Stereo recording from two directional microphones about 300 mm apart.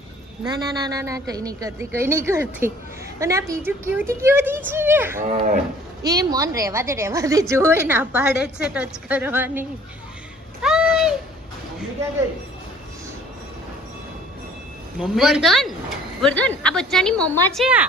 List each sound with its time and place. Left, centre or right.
0.4 s a woman's voice: centre
5.2 s speech: right
6.1 s a woman's voice: centre
10.6 s a sound: centre
14.9 s a woman's voice: centre